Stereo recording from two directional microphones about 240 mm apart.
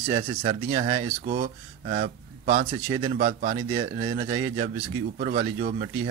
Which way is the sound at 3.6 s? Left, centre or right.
Centre.